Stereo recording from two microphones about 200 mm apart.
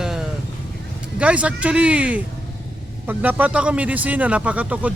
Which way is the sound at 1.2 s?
5° right (ahead or behind).